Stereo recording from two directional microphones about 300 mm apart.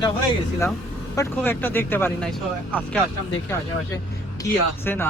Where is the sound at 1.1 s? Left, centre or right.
Centre.